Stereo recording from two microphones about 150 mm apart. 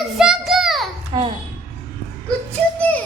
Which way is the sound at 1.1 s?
35° right (ahead or behind).